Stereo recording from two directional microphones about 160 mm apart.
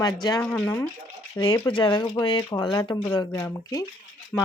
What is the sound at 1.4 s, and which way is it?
Speech, 30° left (ahead or behind).